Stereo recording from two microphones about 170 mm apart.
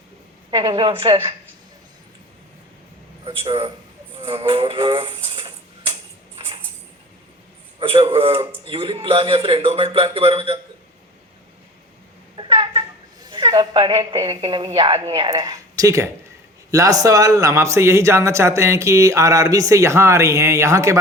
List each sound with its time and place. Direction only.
0.6 s a woman's voice: 25° right (ahead or behind)
3.2 s a man's voice: 25° right (ahead or behind)
4.2 s a sound: 30° right (ahead or behind)
7.8 s a man's voice: 35° right (ahead or behind)
12.4 s a sound: 30° right (ahead or behind)
13.2 s a woman's voice: 25° right (ahead or behind)